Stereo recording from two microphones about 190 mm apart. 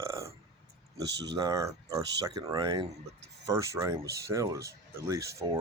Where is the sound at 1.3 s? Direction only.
20° right (ahead or behind).